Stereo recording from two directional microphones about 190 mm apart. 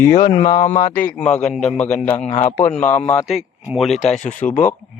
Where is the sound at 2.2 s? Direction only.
35° left (ahead or behind).